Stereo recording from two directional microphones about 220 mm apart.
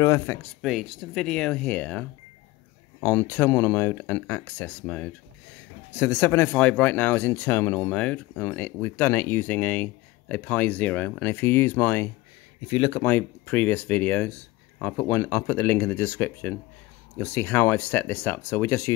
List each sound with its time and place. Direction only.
0.0 s speech: 15° left (ahead or behind)
0.6 s speech: centre (ahead or behind)
12.6 s speech: 25° left (ahead or behind)
13.0 s speech: 5° left (ahead or behind)